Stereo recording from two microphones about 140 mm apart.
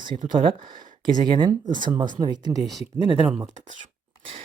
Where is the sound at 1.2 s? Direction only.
35° right (ahead or behind).